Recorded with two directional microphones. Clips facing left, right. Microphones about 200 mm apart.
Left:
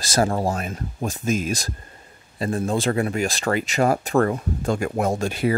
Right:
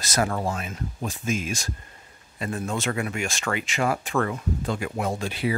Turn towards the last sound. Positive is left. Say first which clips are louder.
# left 5 dB
turn(degrees=45)  # may be behind; listen again after turning